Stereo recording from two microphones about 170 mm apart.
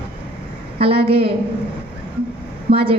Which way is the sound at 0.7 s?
35° right (ahead or behind).